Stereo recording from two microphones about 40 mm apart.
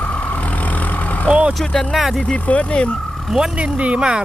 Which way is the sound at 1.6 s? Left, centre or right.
Centre.